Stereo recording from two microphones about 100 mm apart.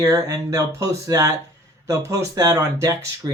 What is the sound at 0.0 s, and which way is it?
Speech, 30° right (ahead or behind).